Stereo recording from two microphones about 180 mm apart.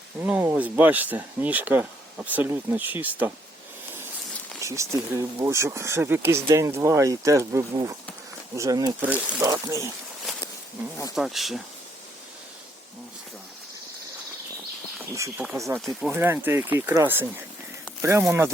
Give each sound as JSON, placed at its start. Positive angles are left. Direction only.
{"t": 0.2, "sound": "speech", "side_deg": -10}
{"t": 4.6, "sound": "speech", "side_deg": -15}
{"t": 9.0, "sound": "speech", "side_deg": -10}
{"t": 11.1, "sound": "speech", "side_deg": 0}
{"t": 15.5, "sound": "speech", "side_deg": -15}